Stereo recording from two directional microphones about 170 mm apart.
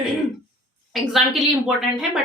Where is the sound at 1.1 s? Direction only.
Centre (ahead or behind).